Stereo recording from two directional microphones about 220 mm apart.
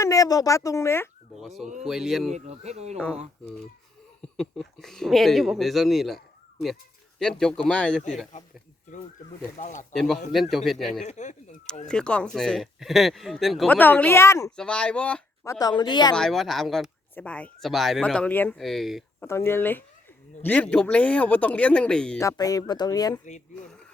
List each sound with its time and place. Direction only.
0.0 s speech: 15° left (ahead or behind)
1.4 s speech: centre (ahead or behind)
2.3 s speech: 30° right (ahead or behind)
4.2 s speech: centre (ahead or behind)
7.2 s speech: 5° left (ahead or behind)
9.6 s speech: 35° left (ahead or behind)
9.9 s speech: centre (ahead or behind)
11.0 s speech: 30° left (ahead or behind)
11.9 s speech: 5° left (ahead or behind); by 16.1 s 20° left (ahead or behind)
16.1 s speech: centre (ahead or behind)
19.3 s speech: 10° left (ahead or behind)